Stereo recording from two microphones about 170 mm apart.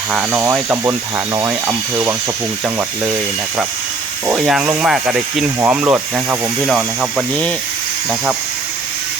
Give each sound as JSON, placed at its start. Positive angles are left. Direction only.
{"t": 0.1, "sound": "speech", "side_deg": -5}
{"t": 4.3, "sound": "speech", "side_deg": -5}